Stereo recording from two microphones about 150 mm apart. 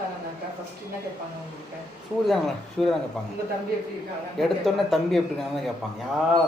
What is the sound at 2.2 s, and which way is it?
Speech, centre (ahead or behind).